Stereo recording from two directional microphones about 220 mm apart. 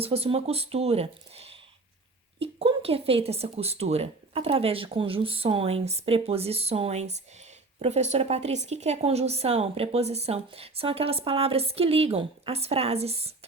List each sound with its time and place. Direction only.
0.0 s a woman's voice: 25° right (ahead or behind)